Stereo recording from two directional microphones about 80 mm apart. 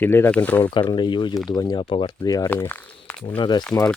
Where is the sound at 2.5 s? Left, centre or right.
Left.